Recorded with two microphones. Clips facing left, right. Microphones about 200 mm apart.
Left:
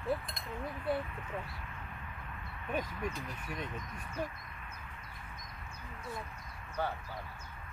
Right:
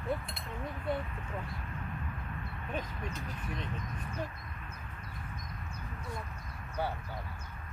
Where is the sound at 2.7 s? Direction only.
10° left (ahead or behind).